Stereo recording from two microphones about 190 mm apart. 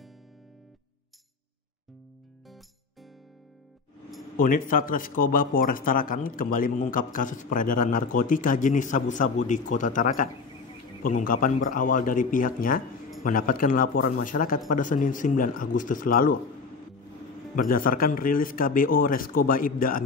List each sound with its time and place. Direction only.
4.4 s speech: 45° left (ahead or behind)
17.6 s speech: 45° left (ahead or behind)